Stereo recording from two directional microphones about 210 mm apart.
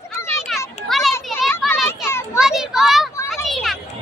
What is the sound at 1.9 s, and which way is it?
Children playing, 10° left (ahead or behind).